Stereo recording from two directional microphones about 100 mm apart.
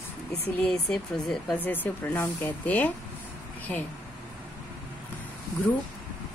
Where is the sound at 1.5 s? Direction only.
15° left (ahead or behind).